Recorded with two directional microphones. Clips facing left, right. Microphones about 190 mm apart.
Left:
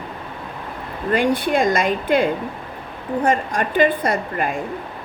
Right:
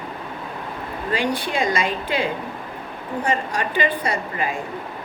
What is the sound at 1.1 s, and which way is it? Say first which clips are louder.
A woman's voice: left 5 dB; 55° left (ahead or behind).